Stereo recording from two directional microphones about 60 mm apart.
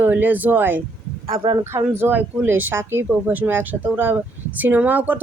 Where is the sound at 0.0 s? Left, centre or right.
Right.